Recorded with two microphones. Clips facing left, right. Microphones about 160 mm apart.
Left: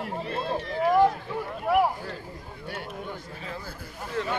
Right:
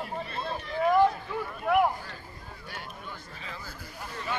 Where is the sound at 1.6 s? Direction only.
5° left (ahead or behind).